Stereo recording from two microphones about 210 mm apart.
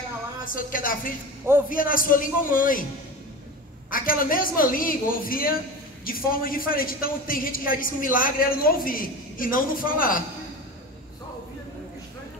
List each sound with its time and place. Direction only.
0.5 s a man's voice: 40° left (ahead or behind)
3.9 s a woman's voice: 40° left (ahead or behind)